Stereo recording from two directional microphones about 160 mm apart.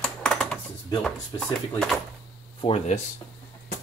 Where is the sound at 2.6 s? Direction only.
40° left (ahead or behind).